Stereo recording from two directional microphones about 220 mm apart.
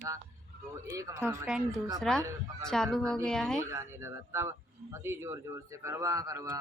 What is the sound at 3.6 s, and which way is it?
Speech, 15° right (ahead or behind).